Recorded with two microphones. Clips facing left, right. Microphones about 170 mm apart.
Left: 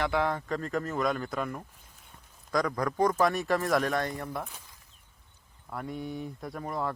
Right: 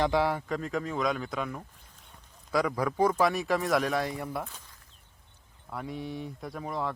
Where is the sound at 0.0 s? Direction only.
10° right (ahead or behind).